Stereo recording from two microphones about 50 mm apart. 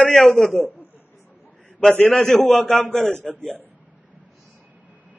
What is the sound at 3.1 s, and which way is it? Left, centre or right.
Speech, left.